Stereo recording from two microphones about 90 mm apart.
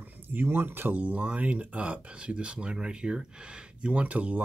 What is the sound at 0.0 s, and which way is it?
Speech, 20° right (ahead or behind).